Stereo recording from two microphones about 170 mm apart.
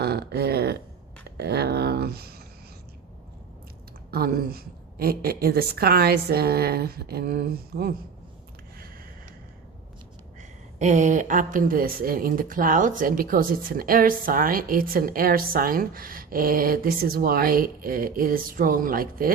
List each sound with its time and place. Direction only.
0.0 s a sound: 70° right (ahead or behind)
4.1 s a woman's voice: 65° right (ahead or behind)
10.8 s a woman's voice: 45° right (ahead or behind)